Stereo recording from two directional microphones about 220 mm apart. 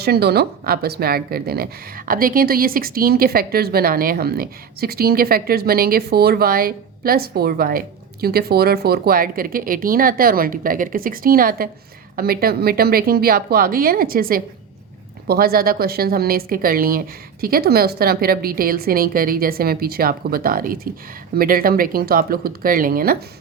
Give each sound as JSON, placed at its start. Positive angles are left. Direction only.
{"t": 0.0, "sound": "speech", "side_deg": -45}